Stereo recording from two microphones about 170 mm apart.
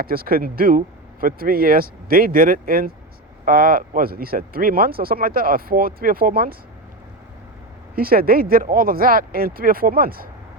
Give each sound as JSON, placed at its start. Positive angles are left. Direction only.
{"t": 0.0, "sound": "speech", "side_deg": -60}
{"t": 7.9, "sound": "speech", "side_deg": -60}